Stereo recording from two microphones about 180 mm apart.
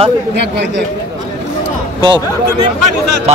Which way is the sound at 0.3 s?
70° right (ahead or behind).